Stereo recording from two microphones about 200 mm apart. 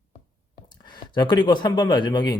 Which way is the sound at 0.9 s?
20° left (ahead or behind).